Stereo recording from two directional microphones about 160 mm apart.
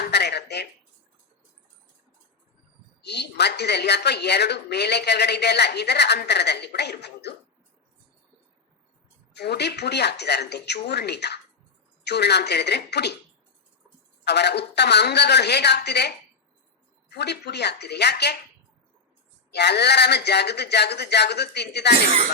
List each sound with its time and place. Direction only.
0.0 s a sound: 90° left
3.0 s a woman's voice: 90° left
9.3 s a woman's voice: 90° left
14.3 s a woman's voice: 90° left
19.5 s a woman's voice: 90° left